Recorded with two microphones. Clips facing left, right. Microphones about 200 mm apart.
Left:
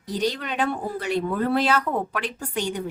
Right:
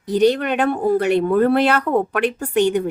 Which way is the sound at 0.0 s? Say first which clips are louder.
Right 10 dB; 60° right (ahead or behind).